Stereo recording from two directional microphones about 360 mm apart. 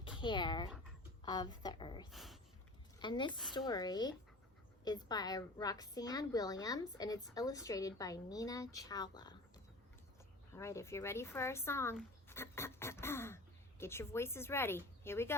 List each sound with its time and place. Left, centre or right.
0.2 s speech: centre
2.0 s speech: centre
3.0 s speech: centre
10.5 s speech: centre